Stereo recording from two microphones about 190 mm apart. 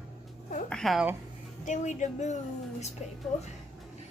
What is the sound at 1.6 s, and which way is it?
A woman's voice, 40° left (ahead or behind).